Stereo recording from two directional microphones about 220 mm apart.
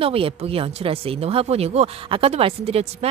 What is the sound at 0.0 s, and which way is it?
Speech, 25° right (ahead or behind).